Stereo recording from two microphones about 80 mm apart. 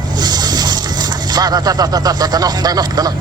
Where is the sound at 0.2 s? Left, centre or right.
Right.